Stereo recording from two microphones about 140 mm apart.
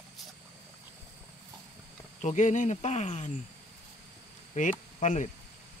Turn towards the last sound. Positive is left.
turn(degrees=60)  # may be behind; listen again after turning